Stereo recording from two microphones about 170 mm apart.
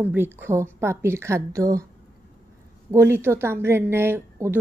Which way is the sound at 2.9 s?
15° right (ahead or behind).